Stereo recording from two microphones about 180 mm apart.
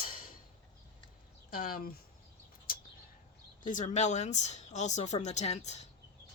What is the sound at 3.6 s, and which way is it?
Speech, 45° left (ahead or behind).